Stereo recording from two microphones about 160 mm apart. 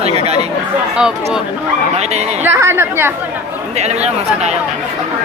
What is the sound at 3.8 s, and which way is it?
Speech, 45° right (ahead or behind).